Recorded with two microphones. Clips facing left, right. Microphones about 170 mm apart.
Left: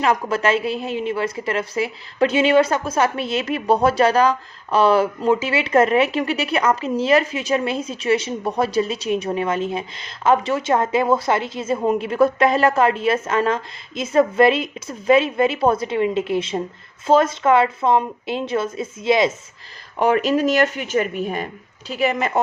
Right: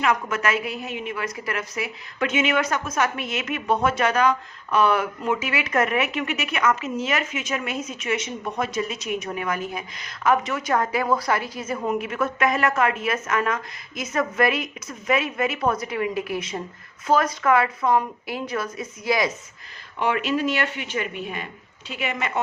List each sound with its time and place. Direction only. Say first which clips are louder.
0.0 s a woman's voice: left 4 dB; 30° left (ahead or behind)
20.0 s speech: left 6 dB; 40° left (ahead or behind)